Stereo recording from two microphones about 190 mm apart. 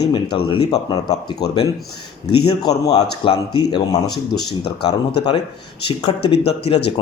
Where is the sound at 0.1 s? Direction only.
25° left (ahead or behind).